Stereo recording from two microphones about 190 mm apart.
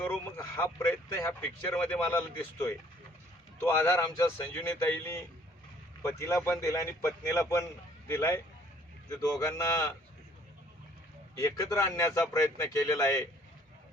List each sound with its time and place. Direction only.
0.0 s speech: 15° left (ahead or behind)
11.3 s speech: 15° left (ahead or behind)